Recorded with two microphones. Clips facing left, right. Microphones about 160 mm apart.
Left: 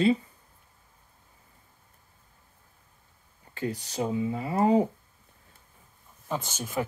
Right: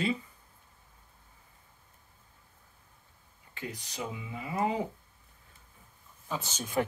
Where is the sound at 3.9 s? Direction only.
35° left (ahead or behind).